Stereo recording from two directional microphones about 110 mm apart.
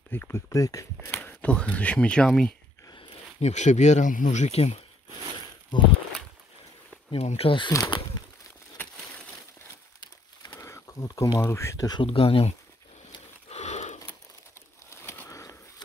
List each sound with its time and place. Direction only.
0.1 s speech: 20° left (ahead or behind)
1.1 s speech: 15° left (ahead or behind)
2.9 s a sound: 50° left (ahead or behind)
3.3 s speech: 85° left
7.1 s speech: 65° left (ahead or behind)
7.7 s a sound: 35° left (ahead or behind)
10.4 s speech: 30° left (ahead or behind)
12.0 s speech: 55° left (ahead or behind)
13.5 s a sound: 90° left
14.5 s bird: 25° left (ahead or behind)